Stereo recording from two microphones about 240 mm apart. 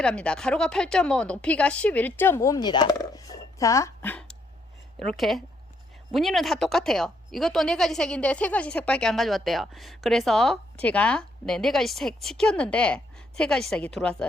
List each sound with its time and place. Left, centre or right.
0.0 s a woman's voice: centre